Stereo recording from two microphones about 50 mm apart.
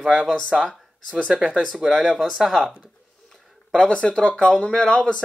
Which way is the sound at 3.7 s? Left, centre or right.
Centre.